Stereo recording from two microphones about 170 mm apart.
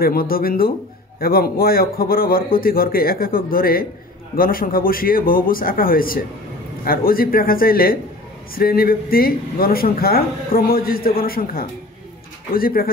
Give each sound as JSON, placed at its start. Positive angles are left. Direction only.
{"t": 0.0, "sound": "a man's voice", "side_deg": 60}